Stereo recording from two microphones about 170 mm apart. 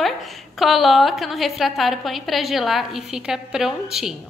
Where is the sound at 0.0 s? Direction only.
Centre (ahead or behind).